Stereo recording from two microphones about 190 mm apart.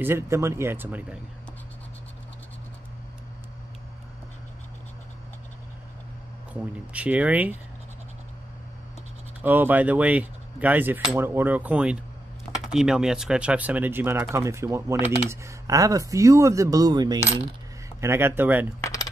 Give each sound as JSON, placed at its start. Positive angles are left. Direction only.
{"t": 0.0, "sound": "speech", "side_deg": -15}
{"t": 6.5, "sound": "speech", "side_deg": -5}
{"t": 9.4, "sound": "speech", "side_deg": -10}
{"t": 18.8, "sound": "coin", "side_deg": 20}